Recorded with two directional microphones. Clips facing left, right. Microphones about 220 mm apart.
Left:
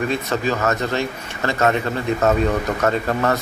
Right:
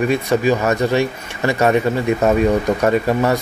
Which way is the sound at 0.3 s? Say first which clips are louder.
Right 5 dB; 15° right (ahead or behind).